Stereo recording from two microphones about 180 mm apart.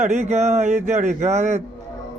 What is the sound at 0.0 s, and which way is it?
Speech, 40° right (ahead or behind).